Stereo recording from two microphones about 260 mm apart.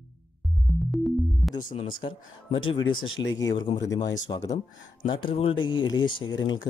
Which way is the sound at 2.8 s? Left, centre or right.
Left.